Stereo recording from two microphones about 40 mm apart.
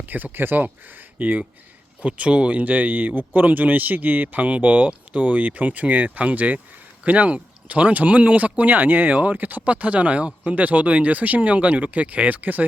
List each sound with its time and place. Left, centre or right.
0.0 s speech: right
2.0 s speech: right